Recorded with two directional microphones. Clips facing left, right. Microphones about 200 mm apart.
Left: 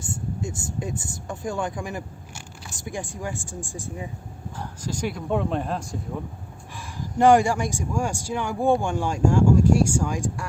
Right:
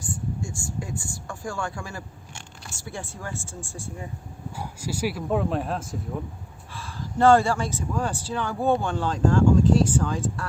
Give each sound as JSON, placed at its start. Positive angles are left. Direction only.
{"t": 0.0, "sound": "speech", "side_deg": 20}
{"t": 4.5, "sound": "speech", "side_deg": -10}
{"t": 6.7, "sound": "speech", "side_deg": 15}